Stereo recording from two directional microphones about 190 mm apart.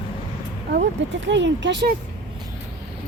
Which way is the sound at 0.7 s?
70° right (ahead or behind).